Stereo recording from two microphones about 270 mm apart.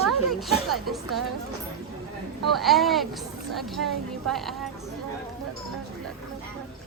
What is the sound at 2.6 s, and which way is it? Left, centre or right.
Speech, centre.